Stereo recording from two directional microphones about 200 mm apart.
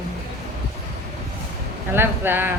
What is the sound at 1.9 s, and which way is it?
Speech, 10° right (ahead or behind).